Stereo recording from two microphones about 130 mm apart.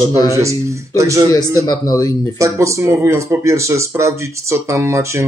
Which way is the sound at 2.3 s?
25° right (ahead or behind).